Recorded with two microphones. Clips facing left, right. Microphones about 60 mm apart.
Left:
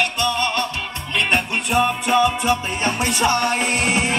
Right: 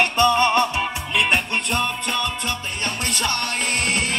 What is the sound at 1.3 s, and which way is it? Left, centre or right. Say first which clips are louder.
Music: left 2 dB; centre.